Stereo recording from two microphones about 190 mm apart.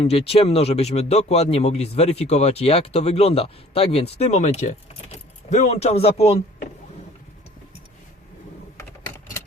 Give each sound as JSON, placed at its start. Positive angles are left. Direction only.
{"t": 0.0, "sound": "speech", "side_deg": 30}